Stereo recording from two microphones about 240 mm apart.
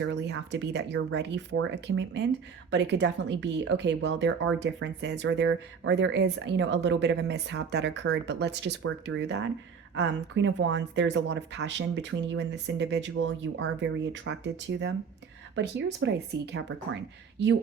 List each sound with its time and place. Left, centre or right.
0.0 s speech: right